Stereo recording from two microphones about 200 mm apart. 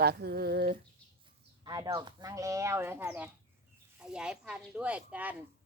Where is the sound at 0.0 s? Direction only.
50° right (ahead or behind).